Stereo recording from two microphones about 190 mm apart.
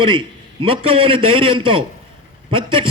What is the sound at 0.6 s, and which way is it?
A man's voice, 30° right (ahead or behind).